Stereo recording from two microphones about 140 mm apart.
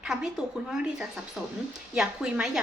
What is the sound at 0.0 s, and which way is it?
A woman's voice, 5° right (ahead or behind).